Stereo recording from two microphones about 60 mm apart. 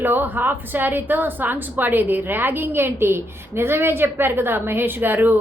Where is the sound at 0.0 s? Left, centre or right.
Right.